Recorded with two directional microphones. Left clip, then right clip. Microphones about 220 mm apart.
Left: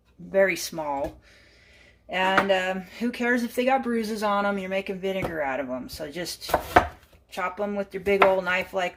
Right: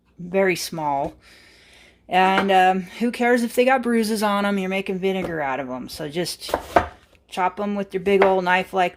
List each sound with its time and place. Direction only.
0.3 s speech: 45° right (ahead or behind)
2.0 s speech: 45° right (ahead or behind)